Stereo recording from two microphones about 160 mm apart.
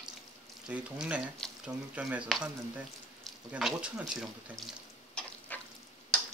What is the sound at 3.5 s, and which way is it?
Speech, 5° right (ahead or behind).